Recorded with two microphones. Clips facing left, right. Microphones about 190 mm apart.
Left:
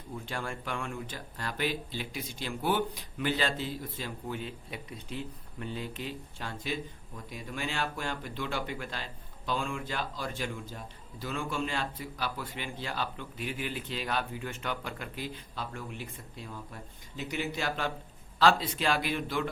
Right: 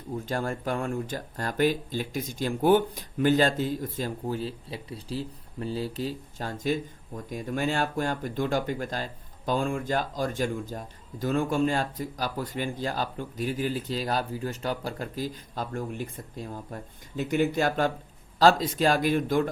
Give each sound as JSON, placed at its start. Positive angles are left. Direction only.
{"t": 0.3, "sound": "speech", "side_deg": -40}